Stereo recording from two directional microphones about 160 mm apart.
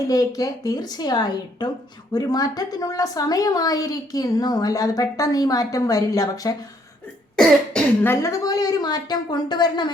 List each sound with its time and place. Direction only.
0.1 s a woman's voice: 20° left (ahead or behind)
7.3 s a woman's voice: 5° left (ahead or behind); by 9.9 s 25° left (ahead or behind)